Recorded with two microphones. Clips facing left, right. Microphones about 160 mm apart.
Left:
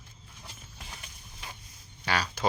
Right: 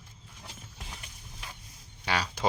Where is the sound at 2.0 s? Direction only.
20° right (ahead or behind).